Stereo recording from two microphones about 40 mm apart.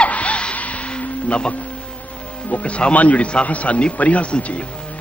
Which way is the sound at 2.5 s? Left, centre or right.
Left.